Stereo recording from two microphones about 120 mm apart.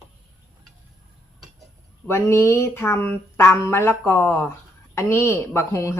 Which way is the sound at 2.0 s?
20° left (ahead or behind).